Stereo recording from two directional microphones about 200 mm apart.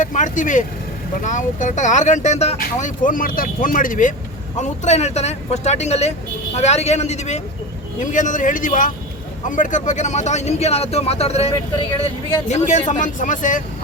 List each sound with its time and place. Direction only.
0.0 s speech: 40° left (ahead or behind)